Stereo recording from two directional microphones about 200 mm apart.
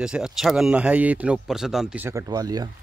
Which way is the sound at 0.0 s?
5° right (ahead or behind).